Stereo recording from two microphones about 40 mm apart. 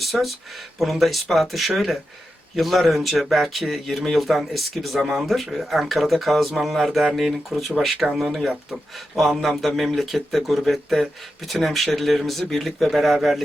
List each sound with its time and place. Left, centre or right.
0.0 s speech: centre